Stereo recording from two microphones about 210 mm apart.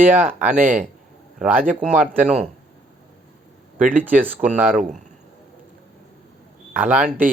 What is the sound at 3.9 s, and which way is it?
Speech, 10° right (ahead or behind).